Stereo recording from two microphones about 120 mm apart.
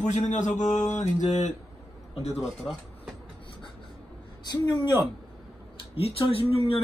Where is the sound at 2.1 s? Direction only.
65° left (ahead or behind).